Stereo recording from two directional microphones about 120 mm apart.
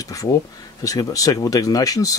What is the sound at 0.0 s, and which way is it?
Speech, 30° left (ahead or behind).